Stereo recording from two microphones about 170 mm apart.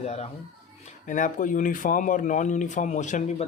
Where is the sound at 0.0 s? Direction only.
40° left (ahead or behind).